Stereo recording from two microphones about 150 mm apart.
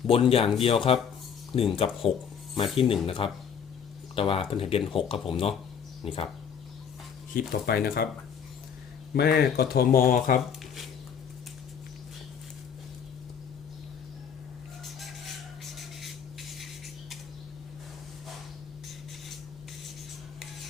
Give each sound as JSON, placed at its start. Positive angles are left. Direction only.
{"t": 0.1, "sound": "speech", "side_deg": 40}
{"t": 7.3, "sound": "speech", "side_deg": 85}
{"t": 9.1, "sound": "speech", "side_deg": 90}
{"t": 14.8, "sound": "rub", "side_deg": 0}